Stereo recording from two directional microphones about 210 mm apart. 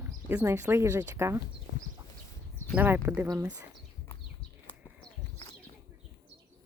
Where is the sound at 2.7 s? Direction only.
10° right (ahead or behind).